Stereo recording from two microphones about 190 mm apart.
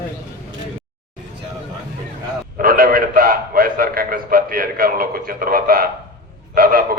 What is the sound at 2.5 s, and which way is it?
A man's voice, 50° right (ahead or behind).